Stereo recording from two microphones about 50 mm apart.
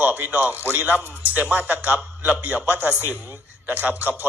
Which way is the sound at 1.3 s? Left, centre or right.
Right.